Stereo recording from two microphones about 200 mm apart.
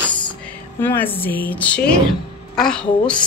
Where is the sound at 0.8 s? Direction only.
10° left (ahead or behind).